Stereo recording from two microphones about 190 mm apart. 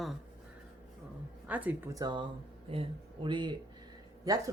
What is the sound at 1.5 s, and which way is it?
Speech, 10° right (ahead or behind).